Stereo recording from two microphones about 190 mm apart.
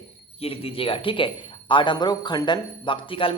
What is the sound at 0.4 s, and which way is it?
Speech, 30° left (ahead or behind).